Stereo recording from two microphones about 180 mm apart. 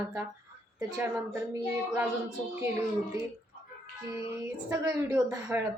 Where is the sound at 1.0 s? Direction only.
15° right (ahead or behind).